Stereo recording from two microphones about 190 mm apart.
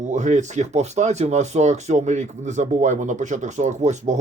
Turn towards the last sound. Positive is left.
turn(degrees=-35)  # may be behind; listen again after turning